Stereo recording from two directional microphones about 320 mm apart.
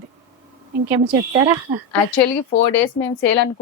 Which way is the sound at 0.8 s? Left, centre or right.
Centre.